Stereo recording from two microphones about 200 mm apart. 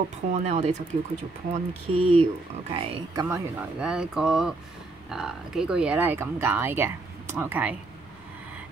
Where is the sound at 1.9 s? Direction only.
90° right.